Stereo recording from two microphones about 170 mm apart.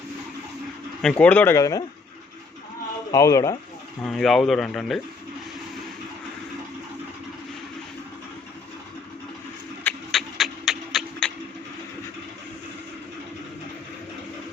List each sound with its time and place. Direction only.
1.2 s speech: 10° left (ahead or behind)
3.1 s speech: 20° left (ahead or behind)
4.0 s speech: centre (ahead or behind)
9.8 s a sound: centre (ahead or behind)